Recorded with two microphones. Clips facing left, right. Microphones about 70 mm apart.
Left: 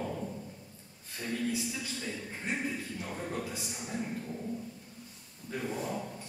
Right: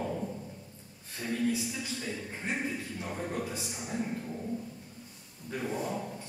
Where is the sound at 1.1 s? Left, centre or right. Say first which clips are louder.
Right 3 dB; centre.